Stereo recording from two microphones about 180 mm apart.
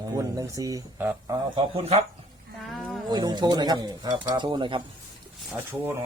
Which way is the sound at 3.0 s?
25° right (ahead or behind).